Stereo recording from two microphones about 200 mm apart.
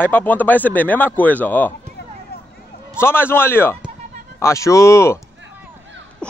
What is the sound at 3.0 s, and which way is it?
Speech, 10° left (ahead or behind).